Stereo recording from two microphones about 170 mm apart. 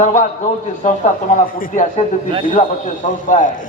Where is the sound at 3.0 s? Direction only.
50° left (ahead or behind).